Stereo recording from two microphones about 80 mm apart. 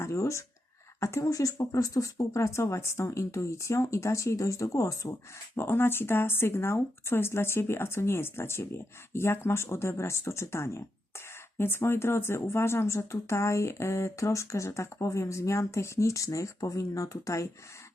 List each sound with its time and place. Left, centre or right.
0.0 s speech: left
5.5 s speech: left